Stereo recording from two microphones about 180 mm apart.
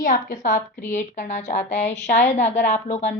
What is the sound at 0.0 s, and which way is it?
A woman's voice, 45° left (ahead or behind).